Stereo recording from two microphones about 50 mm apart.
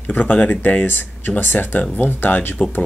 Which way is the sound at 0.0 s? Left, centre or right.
Left.